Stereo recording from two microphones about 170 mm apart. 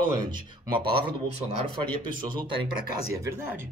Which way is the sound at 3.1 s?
15° right (ahead or behind).